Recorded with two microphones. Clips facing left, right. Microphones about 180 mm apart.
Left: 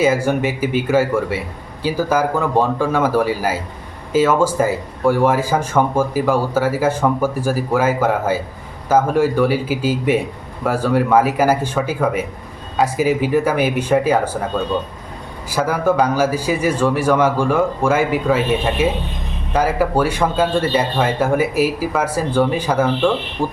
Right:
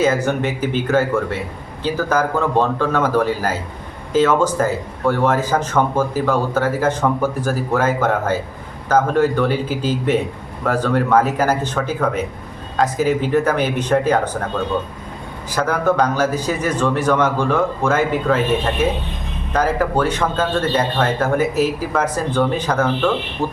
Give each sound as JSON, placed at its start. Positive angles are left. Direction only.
{"t": 0.0, "sound": "speech", "side_deg": 10}
{"t": 15.4, "sound": "speech", "side_deg": 10}